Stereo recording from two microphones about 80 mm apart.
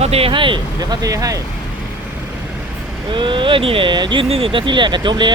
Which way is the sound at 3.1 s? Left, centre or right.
Right.